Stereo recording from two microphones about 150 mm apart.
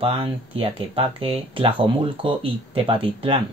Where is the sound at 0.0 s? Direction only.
35° right (ahead or behind).